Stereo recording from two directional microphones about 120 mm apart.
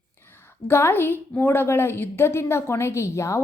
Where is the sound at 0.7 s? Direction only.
20° left (ahead or behind).